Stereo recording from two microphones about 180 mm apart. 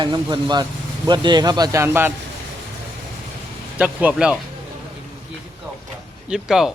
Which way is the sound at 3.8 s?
5° right (ahead or behind).